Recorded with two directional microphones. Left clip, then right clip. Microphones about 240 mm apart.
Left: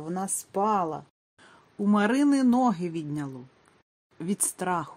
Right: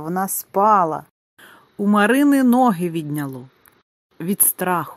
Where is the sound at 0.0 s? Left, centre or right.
Right.